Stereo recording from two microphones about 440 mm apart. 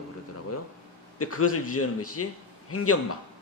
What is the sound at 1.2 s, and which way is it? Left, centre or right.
A man's voice, left.